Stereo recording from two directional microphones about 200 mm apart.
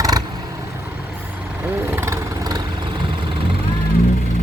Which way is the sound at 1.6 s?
10° right (ahead or behind).